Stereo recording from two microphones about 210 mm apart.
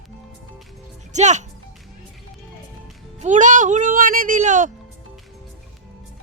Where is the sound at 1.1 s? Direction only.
35° right (ahead or behind).